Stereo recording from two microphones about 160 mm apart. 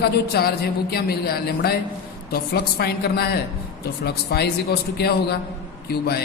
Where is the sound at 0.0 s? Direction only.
80° left.